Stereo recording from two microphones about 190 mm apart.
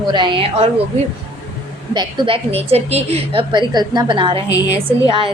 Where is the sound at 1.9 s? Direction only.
25° right (ahead or behind).